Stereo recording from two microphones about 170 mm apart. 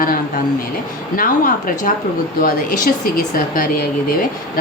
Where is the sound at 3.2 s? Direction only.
55° left (ahead or behind).